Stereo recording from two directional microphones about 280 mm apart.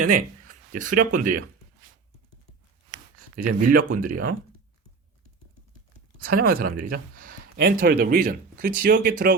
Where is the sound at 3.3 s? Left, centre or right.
Right.